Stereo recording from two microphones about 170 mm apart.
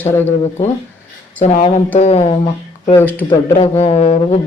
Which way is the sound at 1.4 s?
40° left (ahead or behind).